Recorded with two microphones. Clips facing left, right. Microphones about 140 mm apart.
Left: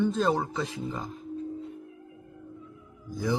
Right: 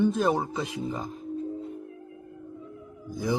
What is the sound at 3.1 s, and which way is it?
Speech, 15° right (ahead or behind).